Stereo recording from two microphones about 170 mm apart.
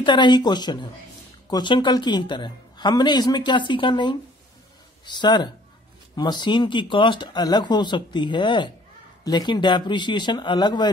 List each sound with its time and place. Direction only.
0.0 s a woman's voice: 25° left (ahead or behind)